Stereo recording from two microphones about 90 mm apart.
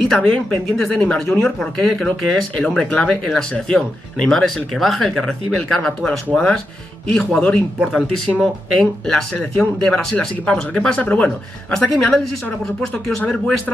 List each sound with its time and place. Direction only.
0.1 s speech: 10° left (ahead or behind)